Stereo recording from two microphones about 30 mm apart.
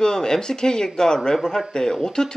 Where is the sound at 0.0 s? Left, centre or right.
Left.